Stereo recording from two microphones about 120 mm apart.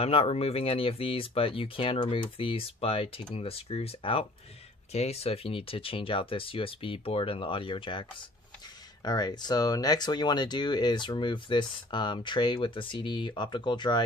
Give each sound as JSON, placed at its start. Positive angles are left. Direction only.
{"t": 0.0, "sound": "speech", "side_deg": 55}